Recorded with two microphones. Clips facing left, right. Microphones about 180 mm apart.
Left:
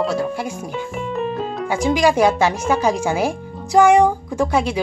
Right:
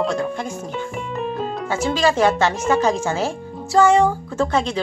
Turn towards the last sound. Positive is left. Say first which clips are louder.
# left 1 dB
turn(degrees=10)  # may be behind; listen again after turning